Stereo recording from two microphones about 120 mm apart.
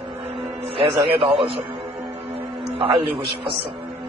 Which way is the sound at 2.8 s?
45° right (ahead or behind).